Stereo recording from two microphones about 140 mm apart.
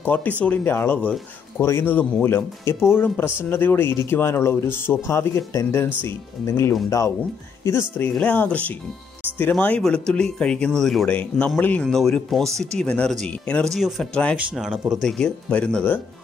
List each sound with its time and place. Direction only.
0.0 s speech: 10° left (ahead or behind)